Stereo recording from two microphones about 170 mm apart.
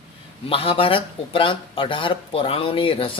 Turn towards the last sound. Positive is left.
turn(degrees=30)  # may be behind; listen again after turning